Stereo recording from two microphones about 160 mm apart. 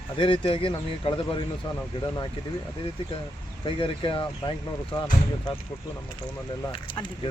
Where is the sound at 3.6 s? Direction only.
30° left (ahead or behind).